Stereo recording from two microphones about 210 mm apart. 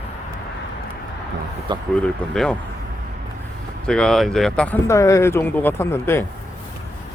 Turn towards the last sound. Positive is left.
turn(degrees=10)  # may be behind; listen again after turning